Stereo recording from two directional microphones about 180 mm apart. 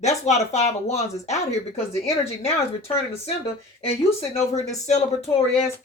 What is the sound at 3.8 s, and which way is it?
Speech, 35° left (ahead or behind).